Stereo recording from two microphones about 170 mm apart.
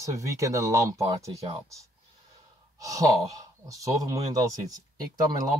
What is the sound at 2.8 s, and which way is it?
Speech, 20° right (ahead or behind).